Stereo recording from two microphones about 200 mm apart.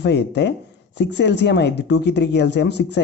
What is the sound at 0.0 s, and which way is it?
Speech, 60° left (ahead or behind).